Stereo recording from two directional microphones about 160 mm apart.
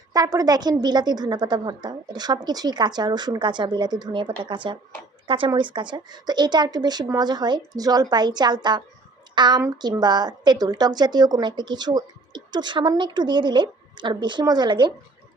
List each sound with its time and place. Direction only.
0.1 s a woman's voice: 25° right (ahead or behind)